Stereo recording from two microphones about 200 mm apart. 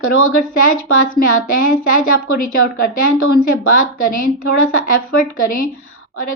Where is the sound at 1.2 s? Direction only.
45° left (ahead or behind).